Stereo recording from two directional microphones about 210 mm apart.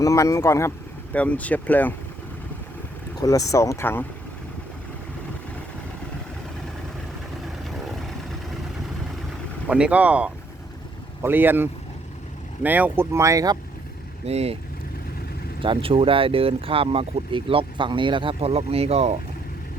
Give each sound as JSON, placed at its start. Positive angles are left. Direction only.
{"t": 0.0, "sound": "speech", "side_deg": 15}
{"t": 3.2, "sound": "speech", "side_deg": 15}
{"t": 7.6, "sound": "vehicle", "side_deg": 0}
{"t": 9.6, "sound": "speech", "side_deg": -5}
{"t": 14.3, "sound": "speech", "side_deg": -30}
{"t": 15.6, "sound": "speech", "side_deg": -25}